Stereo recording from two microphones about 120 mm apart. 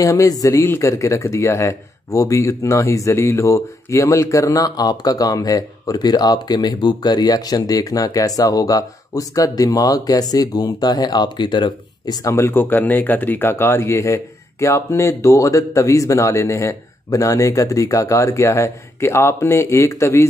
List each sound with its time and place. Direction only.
0.0 s speech: 25° left (ahead or behind)